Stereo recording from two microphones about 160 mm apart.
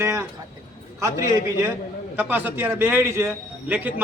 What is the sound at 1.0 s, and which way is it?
A man's voice, 15° right (ahead or behind).